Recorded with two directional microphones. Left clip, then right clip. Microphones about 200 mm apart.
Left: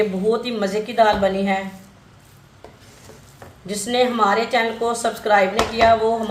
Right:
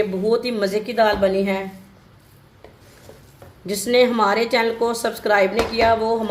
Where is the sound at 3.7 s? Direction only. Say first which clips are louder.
Right 3 dB; 45° right (ahead or behind).